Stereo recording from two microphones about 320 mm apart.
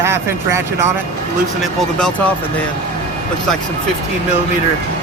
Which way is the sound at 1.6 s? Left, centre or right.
Centre.